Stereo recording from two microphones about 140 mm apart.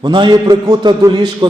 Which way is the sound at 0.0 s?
35° right (ahead or behind).